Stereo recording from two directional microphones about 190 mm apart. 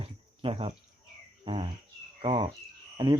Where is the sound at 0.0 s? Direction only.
30° right (ahead or behind).